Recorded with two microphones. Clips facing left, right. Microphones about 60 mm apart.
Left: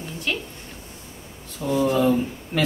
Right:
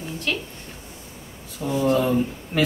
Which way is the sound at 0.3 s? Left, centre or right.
Centre.